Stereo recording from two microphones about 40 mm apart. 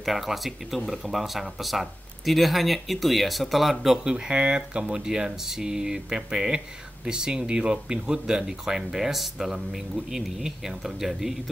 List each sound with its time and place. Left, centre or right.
0.0 s speech: centre
4.0 s speech: right